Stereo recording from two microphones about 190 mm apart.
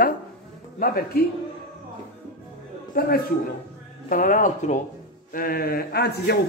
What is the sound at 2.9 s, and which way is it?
A man's voice, 50° left (ahead or behind).